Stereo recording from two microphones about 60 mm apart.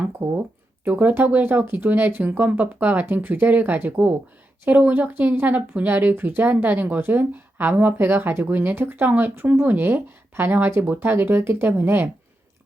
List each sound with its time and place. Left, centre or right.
0.2 s speech: right